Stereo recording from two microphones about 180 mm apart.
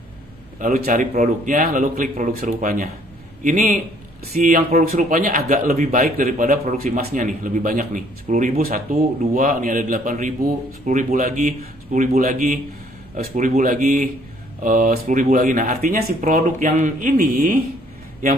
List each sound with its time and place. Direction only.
0.6 s a man's voice: 50° right (ahead or behind)